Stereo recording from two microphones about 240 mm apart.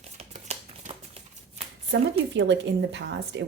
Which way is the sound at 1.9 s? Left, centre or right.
Right.